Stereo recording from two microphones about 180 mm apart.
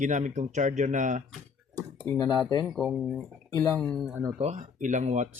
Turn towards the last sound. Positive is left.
turn(degrees=-40)  # may be behind; listen again after turning